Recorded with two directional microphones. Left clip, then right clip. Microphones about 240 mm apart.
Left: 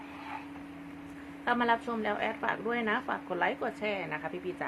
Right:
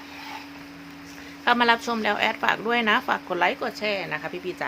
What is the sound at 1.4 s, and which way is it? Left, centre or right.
A woman's voice, right.